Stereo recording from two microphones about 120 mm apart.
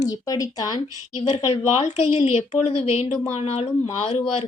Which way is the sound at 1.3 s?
60° left (ahead or behind).